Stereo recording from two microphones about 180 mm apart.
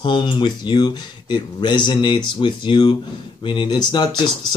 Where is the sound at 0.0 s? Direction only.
25° left (ahead or behind).